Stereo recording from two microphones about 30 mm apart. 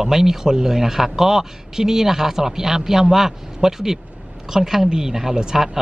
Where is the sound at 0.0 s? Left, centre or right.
Centre.